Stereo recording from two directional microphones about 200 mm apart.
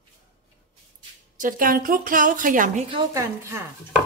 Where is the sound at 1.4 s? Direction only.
40° right (ahead or behind).